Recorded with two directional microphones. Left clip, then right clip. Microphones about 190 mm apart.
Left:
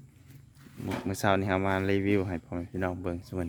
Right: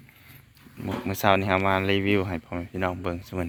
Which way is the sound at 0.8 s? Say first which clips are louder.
Right 5 dB; 10° left (ahead or behind).